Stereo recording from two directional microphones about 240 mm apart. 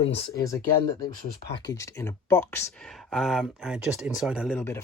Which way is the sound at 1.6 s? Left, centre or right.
Centre.